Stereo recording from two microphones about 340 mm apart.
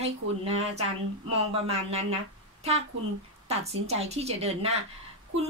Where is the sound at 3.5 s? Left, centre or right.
Centre.